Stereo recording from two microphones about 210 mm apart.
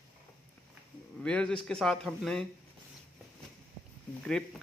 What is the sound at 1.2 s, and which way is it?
Speech, 5° left (ahead or behind).